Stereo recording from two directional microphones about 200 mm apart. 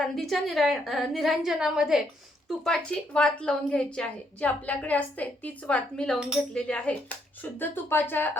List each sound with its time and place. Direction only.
0.0 s a woman's voice: centre (ahead or behind)